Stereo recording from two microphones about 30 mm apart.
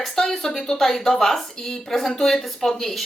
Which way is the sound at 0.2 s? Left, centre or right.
Centre.